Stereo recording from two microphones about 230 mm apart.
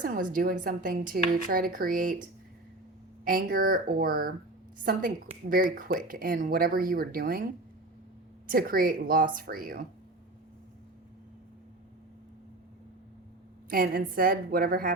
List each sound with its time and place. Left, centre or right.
0.0 s speech: right
3.2 s speech: right
8.4 s speech: right
13.7 s speech: right